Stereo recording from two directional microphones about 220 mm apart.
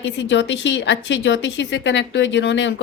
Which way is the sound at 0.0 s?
55° left (ahead or behind).